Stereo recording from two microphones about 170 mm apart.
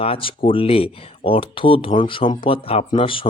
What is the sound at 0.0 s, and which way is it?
Speech, 30° left (ahead or behind).